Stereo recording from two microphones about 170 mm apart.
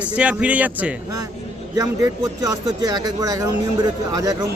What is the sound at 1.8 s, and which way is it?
Speech, 20° right (ahead or behind).